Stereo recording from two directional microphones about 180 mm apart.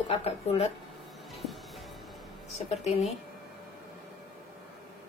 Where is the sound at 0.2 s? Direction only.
35° left (ahead or behind).